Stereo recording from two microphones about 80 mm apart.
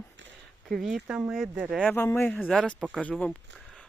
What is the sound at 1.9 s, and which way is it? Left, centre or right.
Speech, centre.